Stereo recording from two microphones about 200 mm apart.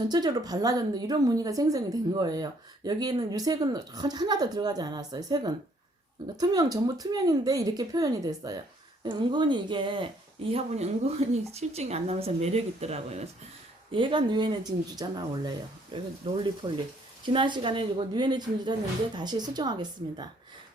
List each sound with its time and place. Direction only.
0.1 s speech: 20° right (ahead or behind)